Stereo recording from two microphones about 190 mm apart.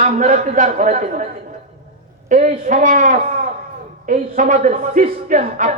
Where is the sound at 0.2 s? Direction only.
40° right (ahead or behind).